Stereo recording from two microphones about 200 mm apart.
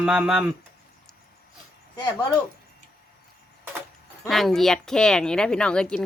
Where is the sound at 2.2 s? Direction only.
15° left (ahead or behind).